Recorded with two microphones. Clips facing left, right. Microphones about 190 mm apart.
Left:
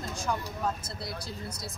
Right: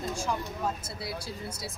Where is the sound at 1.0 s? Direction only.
5° right (ahead or behind).